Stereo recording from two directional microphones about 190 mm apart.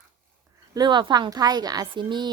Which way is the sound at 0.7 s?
20° right (ahead or behind).